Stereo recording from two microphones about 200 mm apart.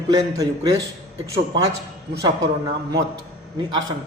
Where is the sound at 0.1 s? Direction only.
20° right (ahead or behind).